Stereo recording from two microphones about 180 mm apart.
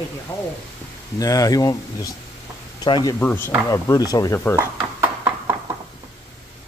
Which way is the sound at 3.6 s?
20° left (ahead or behind).